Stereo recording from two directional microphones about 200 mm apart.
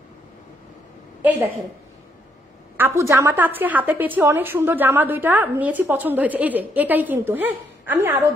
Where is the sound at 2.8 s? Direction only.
15° right (ahead or behind).